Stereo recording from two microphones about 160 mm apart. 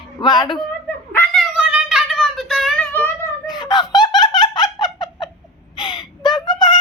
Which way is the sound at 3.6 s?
25° left (ahead or behind).